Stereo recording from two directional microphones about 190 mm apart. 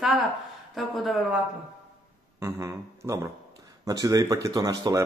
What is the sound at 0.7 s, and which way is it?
Speech, centre (ahead or behind).